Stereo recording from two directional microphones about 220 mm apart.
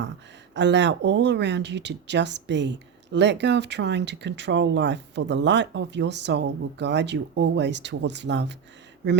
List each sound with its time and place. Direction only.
0.5 s speech: 55° right (ahead or behind)